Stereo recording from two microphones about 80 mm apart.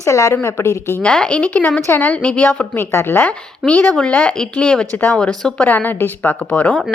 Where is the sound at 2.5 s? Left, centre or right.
Left.